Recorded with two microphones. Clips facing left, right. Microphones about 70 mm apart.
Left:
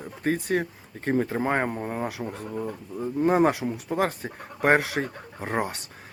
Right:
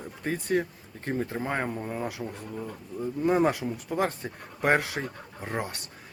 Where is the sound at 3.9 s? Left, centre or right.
Left.